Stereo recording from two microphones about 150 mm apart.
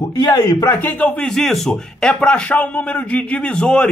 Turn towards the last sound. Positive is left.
turn(degrees=5)  # may be behind; listen again after turning